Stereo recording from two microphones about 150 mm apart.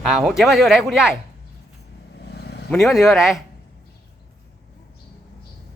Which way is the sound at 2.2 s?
90° left.